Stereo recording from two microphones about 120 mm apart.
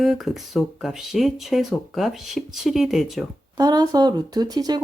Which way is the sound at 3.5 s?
30° right (ahead or behind).